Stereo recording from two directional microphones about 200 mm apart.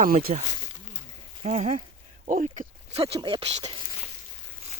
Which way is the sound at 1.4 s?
35° right (ahead or behind).